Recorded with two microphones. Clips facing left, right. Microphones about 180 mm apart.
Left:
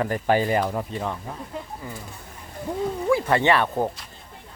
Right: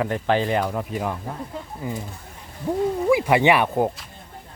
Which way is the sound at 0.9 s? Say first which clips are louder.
Right 2 dB; 10° right (ahead or behind).